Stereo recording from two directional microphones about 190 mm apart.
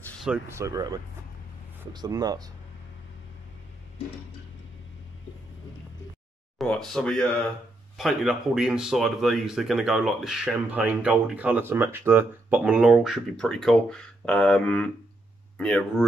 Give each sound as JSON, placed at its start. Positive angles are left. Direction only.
{"t": 0.5, "sound": "speech", "side_deg": -15}
{"t": 4.0, "sound": "tick-tock", "side_deg": 30}
{"t": 6.6, "sound": "speech", "side_deg": 0}